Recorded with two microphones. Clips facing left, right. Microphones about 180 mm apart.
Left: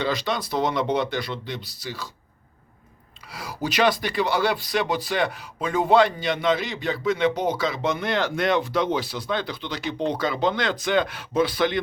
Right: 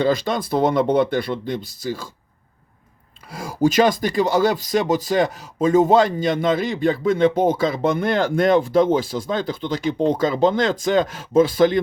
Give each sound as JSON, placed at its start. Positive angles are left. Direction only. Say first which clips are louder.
{"t": 0.0, "sound": "speech", "louder": "right 6 dB", "side_deg": -50}
{"t": 3.3, "sound": "speech", "louder": "right 8 dB", "side_deg": -45}